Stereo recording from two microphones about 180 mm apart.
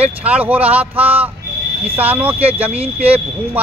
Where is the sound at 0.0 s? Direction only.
10° right (ahead or behind).